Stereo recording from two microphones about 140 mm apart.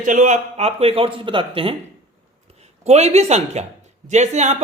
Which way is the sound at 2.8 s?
50° right (ahead or behind).